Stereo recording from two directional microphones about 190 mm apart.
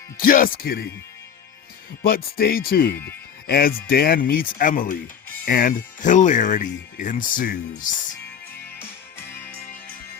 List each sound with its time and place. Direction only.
0.2 s speech: 45° left (ahead or behind)
2.0 s speech: 50° left (ahead or behind)
8.8 s music: 10° left (ahead or behind)